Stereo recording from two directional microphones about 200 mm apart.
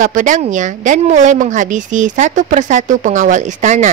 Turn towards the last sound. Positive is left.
turn(degrees=-35)  # may be behind; listen again after turning